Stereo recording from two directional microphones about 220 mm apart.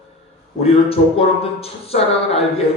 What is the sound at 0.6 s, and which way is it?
A man's voice, 25° left (ahead or behind).